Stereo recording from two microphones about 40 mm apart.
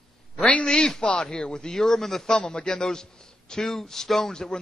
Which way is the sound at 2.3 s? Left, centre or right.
Centre.